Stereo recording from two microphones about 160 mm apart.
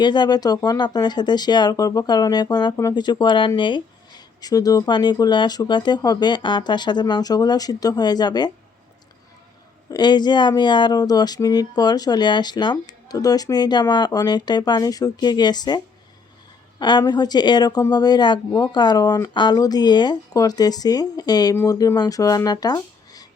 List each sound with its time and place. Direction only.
0.0 s speech: 25° left (ahead or behind)
9.9 s speech: 25° left (ahead or behind)